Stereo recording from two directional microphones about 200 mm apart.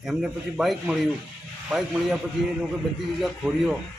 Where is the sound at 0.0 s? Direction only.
Centre (ahead or behind).